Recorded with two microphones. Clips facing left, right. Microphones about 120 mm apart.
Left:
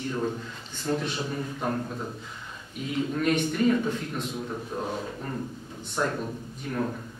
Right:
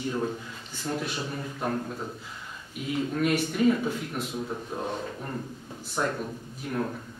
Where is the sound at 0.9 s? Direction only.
5° right (ahead or behind).